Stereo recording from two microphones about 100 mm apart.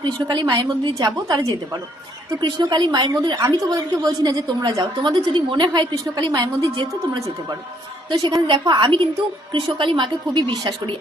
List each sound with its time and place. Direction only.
0.0 s a woman's voice: 45° right (ahead or behind)
8.4 s a woman's voice: 50° right (ahead or behind)